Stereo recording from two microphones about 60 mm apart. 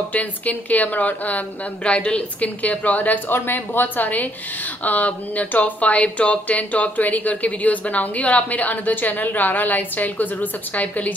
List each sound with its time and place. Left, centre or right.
0.1 s speech: left